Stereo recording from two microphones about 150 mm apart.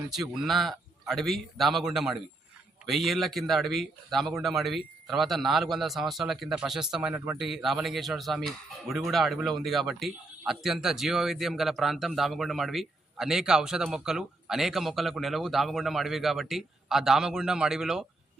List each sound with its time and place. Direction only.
0.1 s speech: centre (ahead or behind)